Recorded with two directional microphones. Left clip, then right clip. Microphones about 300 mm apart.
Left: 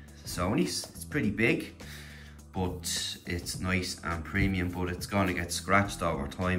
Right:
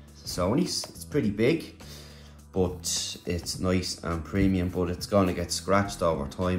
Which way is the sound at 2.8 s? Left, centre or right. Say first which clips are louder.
Right 3 dB; centre.